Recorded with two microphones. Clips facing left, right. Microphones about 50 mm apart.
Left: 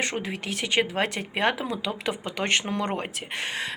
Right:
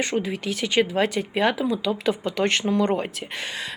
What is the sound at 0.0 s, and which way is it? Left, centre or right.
Speech, left.